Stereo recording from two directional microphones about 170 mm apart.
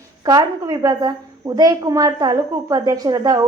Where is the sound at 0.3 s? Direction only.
20° right (ahead or behind).